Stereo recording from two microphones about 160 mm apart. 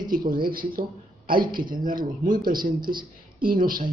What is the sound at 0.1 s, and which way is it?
A man's voice, 65° right (ahead or behind).